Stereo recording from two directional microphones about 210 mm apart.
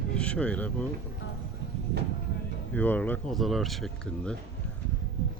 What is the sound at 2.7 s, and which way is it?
Speech, 10° left (ahead or behind).